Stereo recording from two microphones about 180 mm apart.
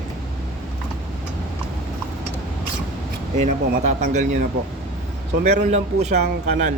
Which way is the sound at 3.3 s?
40° right (ahead or behind).